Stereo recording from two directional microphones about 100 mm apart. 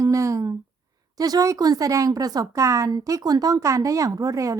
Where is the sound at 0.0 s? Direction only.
30° right (ahead or behind).